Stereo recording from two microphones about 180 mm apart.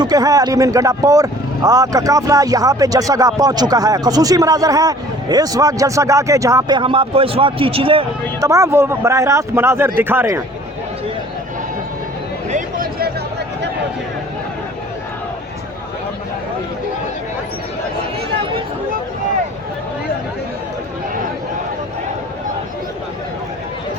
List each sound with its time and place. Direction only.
0.0 s speech: 20° right (ahead or behind)
8.4 s speech: 15° right (ahead or behind)
12.5 s a sound: 50° right (ahead or behind)